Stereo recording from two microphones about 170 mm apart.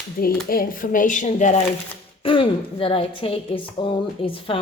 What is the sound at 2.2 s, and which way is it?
A woman's voice, 30° left (ahead or behind).